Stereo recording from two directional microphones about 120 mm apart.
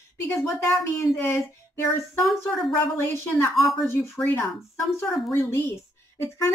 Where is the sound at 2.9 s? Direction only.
25° left (ahead or behind).